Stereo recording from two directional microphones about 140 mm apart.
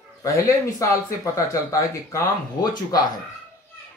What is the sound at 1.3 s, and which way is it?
Speech, 25° left (ahead or behind).